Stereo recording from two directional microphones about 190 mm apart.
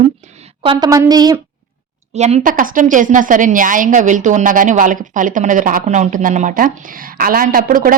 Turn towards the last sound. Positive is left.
turn(degrees=-45)  # may be behind; listen again after turning